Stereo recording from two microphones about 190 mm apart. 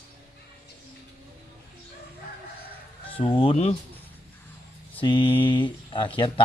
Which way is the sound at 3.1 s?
30° left (ahead or behind).